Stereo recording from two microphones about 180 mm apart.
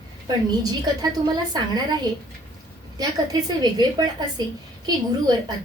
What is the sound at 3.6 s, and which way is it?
A woman's voice, 25° right (ahead or behind).